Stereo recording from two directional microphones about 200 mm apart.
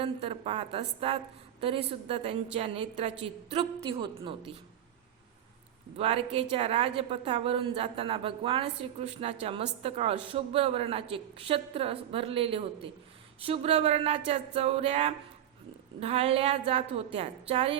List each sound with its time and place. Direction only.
0.0 s a woman's voice: 30° right (ahead or behind)
6.0 s a woman's voice: 30° right (ahead or behind)